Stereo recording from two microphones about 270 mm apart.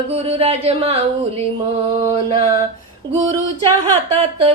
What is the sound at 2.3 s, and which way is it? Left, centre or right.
Music, right.